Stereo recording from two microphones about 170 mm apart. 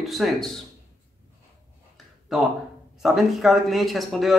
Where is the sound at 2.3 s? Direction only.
Centre (ahead or behind).